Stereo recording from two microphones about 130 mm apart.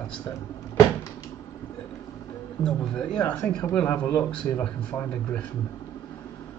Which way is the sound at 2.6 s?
5° left (ahead or behind).